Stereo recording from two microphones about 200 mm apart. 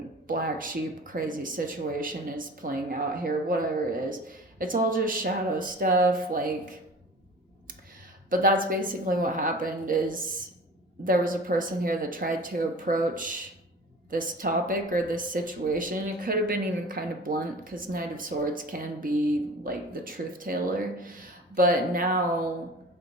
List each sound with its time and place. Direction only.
0.3 s speech: 45° right (ahead or behind)
8.3 s speech: 45° right (ahead or behind)